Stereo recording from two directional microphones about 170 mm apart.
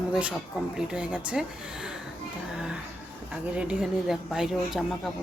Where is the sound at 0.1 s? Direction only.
10° right (ahead or behind).